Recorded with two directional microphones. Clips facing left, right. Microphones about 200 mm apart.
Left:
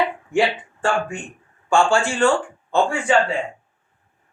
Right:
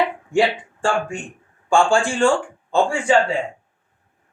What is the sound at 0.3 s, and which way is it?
Speech, 10° right (ahead or behind).